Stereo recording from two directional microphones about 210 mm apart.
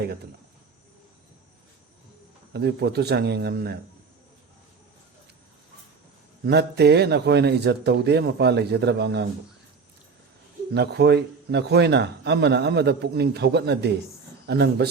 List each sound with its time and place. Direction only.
2.5 s a man's voice: 50° right (ahead or behind)
6.4 s a man's voice: 50° right (ahead or behind)
10.8 s a man's voice: 50° right (ahead or behind)